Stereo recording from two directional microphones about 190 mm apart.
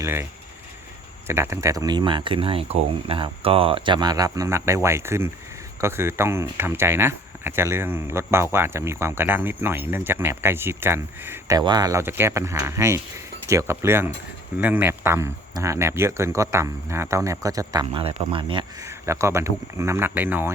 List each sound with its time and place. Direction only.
0.0 s speech: 10° right (ahead or behind)
1.3 s speech: 15° right (ahead or behind)
18.0 s speech: 30° right (ahead or behind)
18.9 s speech: 15° right (ahead or behind)